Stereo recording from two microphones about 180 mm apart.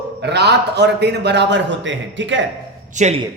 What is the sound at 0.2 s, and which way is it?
A man's voice, 70° right (ahead or behind).